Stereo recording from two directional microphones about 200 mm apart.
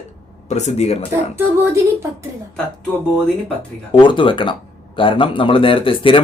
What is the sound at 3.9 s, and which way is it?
Speech, 25° left (ahead or behind).